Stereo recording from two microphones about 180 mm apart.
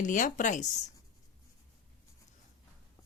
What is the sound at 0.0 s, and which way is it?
Speech, 45° left (ahead or behind).